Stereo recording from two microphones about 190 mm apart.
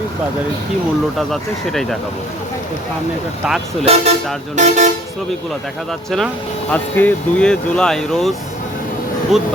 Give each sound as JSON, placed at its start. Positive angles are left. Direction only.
{"t": 1.3, "sound": "speech", "side_deg": 0}
{"t": 3.4, "sound": "speech", "side_deg": 0}
{"t": 3.8, "sound": "speech", "side_deg": -35}
{"t": 6.1, "sound": "speech", "side_deg": 0}